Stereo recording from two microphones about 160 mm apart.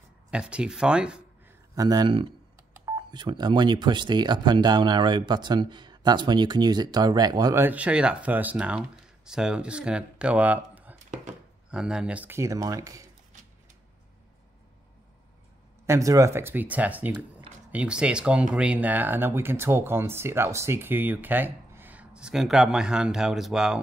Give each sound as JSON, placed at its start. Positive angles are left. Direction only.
{"t": 0.3, "sound": "speech", "side_deg": -5}
{"t": 1.8, "sound": "speech", "side_deg": -25}
{"t": 7.6, "sound": "speech", "side_deg": -10}
{"t": 15.9, "sound": "speech", "side_deg": -20}